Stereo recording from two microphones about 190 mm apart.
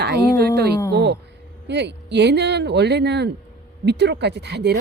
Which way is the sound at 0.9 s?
60° right (ahead or behind).